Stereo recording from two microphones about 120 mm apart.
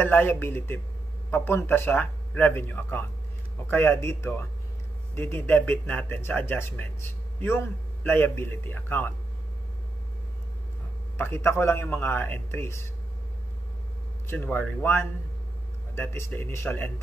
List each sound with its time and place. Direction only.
0.0 s a man's voice: 15° left (ahead or behind)
11.1 s a man's voice: 20° left (ahead or behind)
14.2 s a man's voice: 15° left (ahead or behind)